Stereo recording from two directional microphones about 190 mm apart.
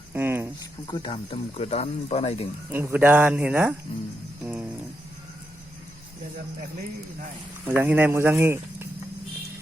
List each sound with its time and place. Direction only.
0.1 s a sound: 10° right (ahead or behind)
0.9 s speech: 25° left (ahead or behind)
2.7 s speech: 10° right (ahead or behind)
7.6 s speech: 10° right (ahead or behind)